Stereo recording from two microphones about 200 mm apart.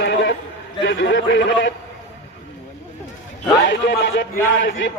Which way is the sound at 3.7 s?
60° left (ahead or behind).